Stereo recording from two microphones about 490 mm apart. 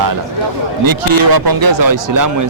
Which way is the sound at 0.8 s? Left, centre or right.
Right.